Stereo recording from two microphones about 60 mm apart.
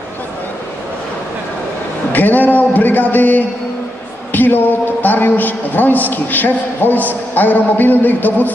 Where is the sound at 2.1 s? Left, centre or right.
Left.